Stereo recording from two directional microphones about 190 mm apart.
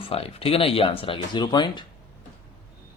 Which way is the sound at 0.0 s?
30° left (ahead or behind).